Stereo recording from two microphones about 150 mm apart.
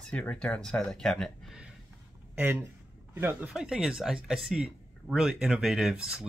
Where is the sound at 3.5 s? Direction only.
5° right (ahead or behind).